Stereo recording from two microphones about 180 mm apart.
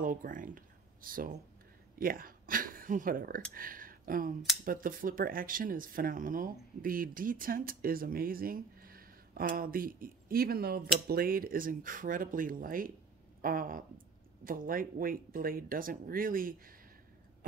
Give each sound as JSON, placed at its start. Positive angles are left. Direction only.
{"t": 0.0, "sound": "speech", "side_deg": -50}